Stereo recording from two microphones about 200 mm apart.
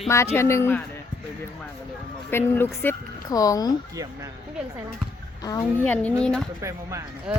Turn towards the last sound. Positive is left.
turn(degrees=-5)  # may be behind; listen again after turning